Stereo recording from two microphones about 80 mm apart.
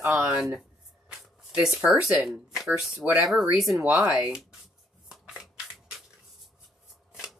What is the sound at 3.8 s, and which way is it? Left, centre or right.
Speech, centre.